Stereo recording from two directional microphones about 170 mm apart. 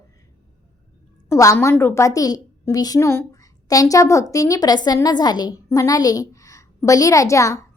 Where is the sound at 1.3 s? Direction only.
15° left (ahead or behind).